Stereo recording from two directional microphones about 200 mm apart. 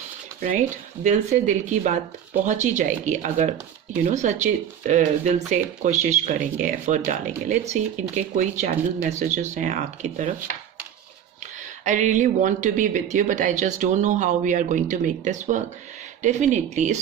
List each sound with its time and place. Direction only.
1.0 s speech: 35° right (ahead or behind)
11.9 s speech: 40° right (ahead or behind)